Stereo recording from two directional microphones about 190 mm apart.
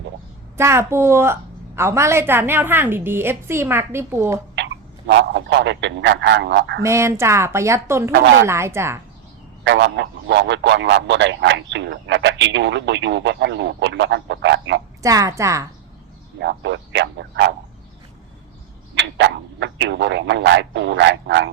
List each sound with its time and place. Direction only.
0.5 s a woman's voice: 15° right (ahead or behind)
4.5 s speech: 70° right (ahead or behind)
6.8 s a woman's voice: 15° right (ahead or behind)
8.1 s a man's voice: 70° right (ahead or behind)
8.4 s a woman's voice: 15° right (ahead or behind)
9.6 s a man's voice: 70° right (ahead or behind)
15.0 s a woman's voice: 15° right (ahead or behind)
16.4 s a man's voice: 70° right (ahead or behind)
18.9 s speech: 70° right (ahead or behind)